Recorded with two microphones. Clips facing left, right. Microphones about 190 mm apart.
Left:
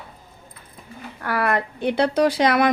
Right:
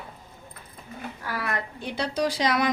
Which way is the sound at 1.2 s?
60° left (ahead or behind).